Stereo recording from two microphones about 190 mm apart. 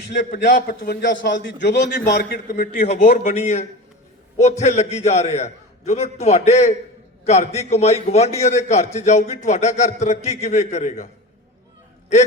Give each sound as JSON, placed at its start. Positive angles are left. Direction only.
{"t": 0.1, "sound": "a man's voice", "side_deg": 60}
{"t": 2.8, "sound": "a man's voice", "side_deg": 35}